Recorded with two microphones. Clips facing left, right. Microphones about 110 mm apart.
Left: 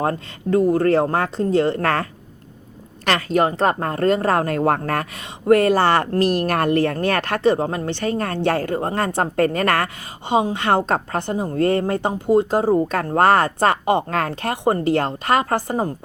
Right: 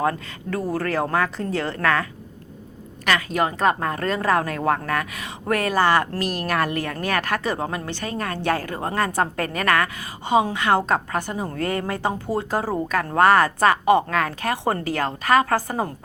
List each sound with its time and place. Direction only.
0.5 s a woman's voice: 25° left (ahead or behind)
1.8 s a woman's voice: 40° left (ahead or behind)
3.2 s a woman's voice: 30° left (ahead or behind)
6.4 s a woman's voice: 40° left (ahead or behind)
12.2 s a woman's voice: 20° left (ahead or behind); by 14.5 s 35° left (ahead or behind)
14.6 s a woman's voice: 25° left (ahead or behind)